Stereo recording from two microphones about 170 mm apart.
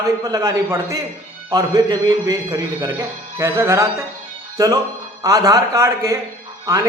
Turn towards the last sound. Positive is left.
turn(degrees=-20)  # may be behind; listen again after turning